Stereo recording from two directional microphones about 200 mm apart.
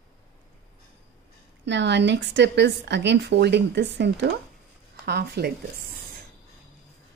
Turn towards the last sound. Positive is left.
turn(degrees=-55)  # may be behind; listen again after turning